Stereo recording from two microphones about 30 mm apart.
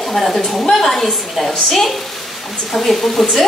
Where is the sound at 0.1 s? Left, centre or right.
Centre.